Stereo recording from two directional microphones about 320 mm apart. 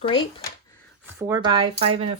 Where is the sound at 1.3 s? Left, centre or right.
Centre.